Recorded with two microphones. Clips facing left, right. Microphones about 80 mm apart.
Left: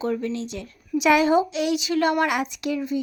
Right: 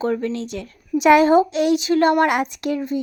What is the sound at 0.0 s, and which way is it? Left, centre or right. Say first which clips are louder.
Speech: right 3 dB; right.